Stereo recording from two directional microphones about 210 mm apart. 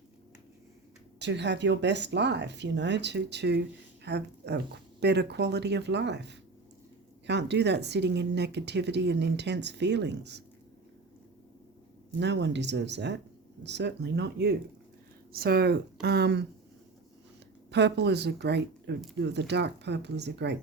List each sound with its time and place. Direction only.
1.2 s speech: 55° right (ahead or behind)
12.2 s speech: 55° right (ahead or behind)
17.7 s speech: 55° right (ahead or behind)